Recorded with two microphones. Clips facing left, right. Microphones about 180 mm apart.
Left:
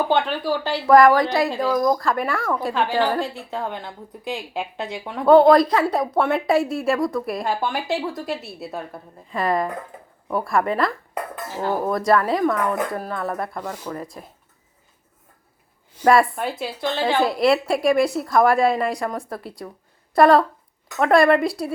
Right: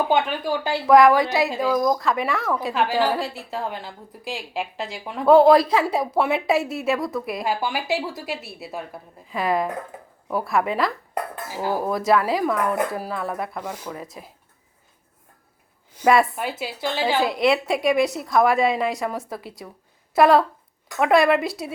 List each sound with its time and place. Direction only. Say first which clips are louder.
0.1 s speech: left 1 dB; 15° right (ahead or behind)
0.9 s a woman's voice: left 1 dB; centre (ahead or behind)
16.0 s a woman's voice: left 1 dB; centre (ahead or behind)